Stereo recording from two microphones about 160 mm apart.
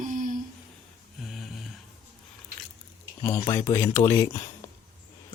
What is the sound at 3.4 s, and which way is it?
Speech, 20° left (ahead or behind).